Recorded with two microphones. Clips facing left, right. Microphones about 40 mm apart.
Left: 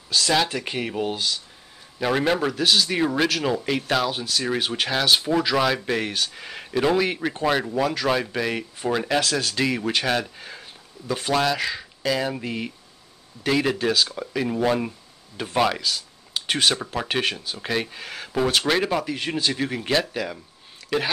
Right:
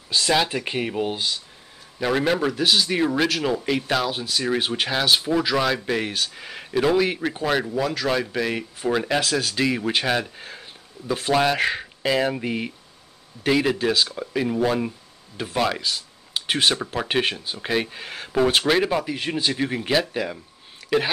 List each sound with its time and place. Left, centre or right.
0.1 s a man's voice: centre
2.0 s a man's voice: centre
11.5 s speech: right
12.0 s a man's voice: centre
15.8 s speech: centre
17.2 s speech: centre
17.6 s a man's voice: centre